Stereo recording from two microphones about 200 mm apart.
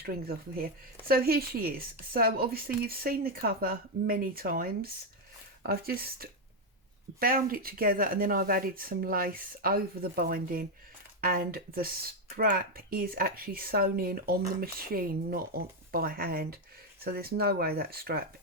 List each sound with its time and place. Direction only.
0.0 s speech: 50° right (ahead or behind)